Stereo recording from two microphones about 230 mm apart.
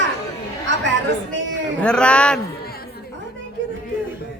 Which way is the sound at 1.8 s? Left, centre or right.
Centre.